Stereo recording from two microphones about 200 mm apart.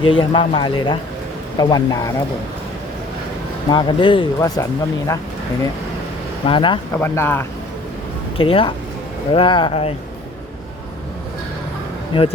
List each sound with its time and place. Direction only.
0.0 s speech: 25° left (ahead or behind)
3.7 s speech: 20° left (ahead or behind)
6.4 s speech: 25° left (ahead or behind)
6.9 s speech: 10° left (ahead or behind)
8.4 s speech: 25° left (ahead or behind)